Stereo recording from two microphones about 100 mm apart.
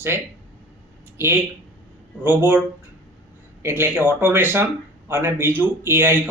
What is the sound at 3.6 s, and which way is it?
A man's voice, 20° right (ahead or behind).